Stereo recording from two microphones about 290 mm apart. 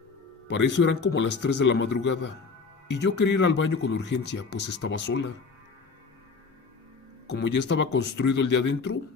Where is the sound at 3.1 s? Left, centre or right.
Left.